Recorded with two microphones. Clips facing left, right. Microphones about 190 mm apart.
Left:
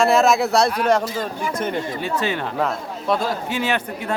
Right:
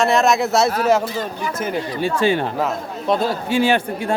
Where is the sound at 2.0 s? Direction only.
30° right (ahead or behind).